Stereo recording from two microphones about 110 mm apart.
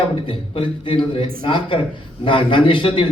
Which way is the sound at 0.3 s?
55° left (ahead or behind).